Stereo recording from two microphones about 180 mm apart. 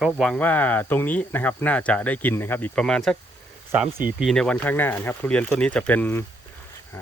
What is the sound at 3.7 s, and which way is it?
Speech, 10° right (ahead or behind).